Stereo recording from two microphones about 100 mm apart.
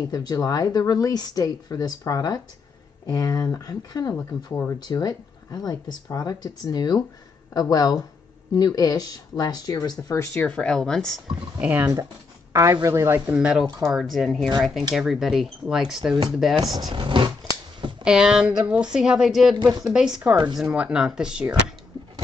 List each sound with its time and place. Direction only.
0.1 s speech: 40° left (ahead or behind)
4.7 s speech: 40° left (ahead or behind)
10.4 s speech: 10° left (ahead or behind)
11.6 s speech: 15° right (ahead or behind)
12.7 s speech: 30° right (ahead or behind)
13.3 s speech: 10° right (ahead or behind)
13.8 s speech: centre (ahead or behind)
16.9 s speech: 55° right (ahead or behind)
18.0 s speech: 5° right (ahead or behind)